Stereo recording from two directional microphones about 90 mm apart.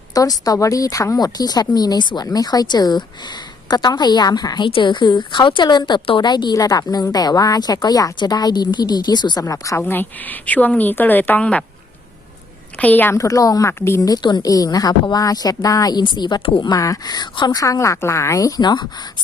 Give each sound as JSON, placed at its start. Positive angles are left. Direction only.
{"t": 0.1, "sound": "speech", "side_deg": 40}
{"t": 4.7, "sound": "a woman's voice", "side_deg": 60}
{"t": 9.4, "sound": "a woman's voice", "side_deg": 35}
{"t": 9.8, "sound": "a woman's voice", "side_deg": 20}
{"t": 12.7, "sound": "a woman's voice", "side_deg": 15}
{"t": 13.1, "sound": "a woman's voice", "side_deg": 40}
{"t": 13.7, "sound": "a woman's voice", "side_deg": 30}
{"t": 14.0, "sound": "a woman's voice", "side_deg": 50}